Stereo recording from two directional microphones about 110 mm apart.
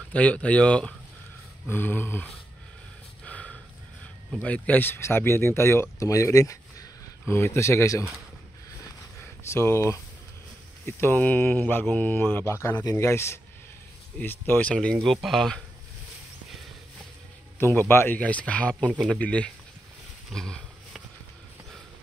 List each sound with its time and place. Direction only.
0.1 s speech: 10° left (ahead or behind)
3.3 s snort: 10° left (ahead or behind)
4.3 s speech: 10° left (ahead or behind); by 8.0 s 25° left (ahead or behind)
9.2 s speech: 20° left (ahead or behind)
14.7 s speech: 10° left (ahead or behind)
17.6 s speech: 20° left (ahead or behind)